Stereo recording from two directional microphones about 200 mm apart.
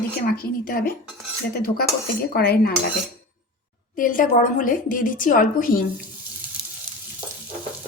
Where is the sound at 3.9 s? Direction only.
40° left (ahead or behind).